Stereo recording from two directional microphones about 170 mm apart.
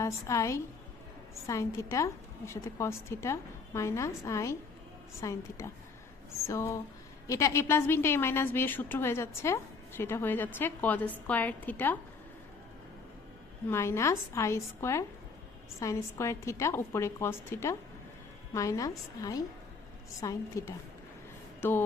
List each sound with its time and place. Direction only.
0.0 s a woman's voice: 20° left (ahead or behind)
13.7 s a woman's voice: 15° left (ahead or behind)